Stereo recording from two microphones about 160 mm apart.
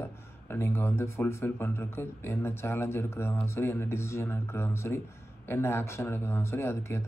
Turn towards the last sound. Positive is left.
turn(degrees=15)  # may be behind; listen again after turning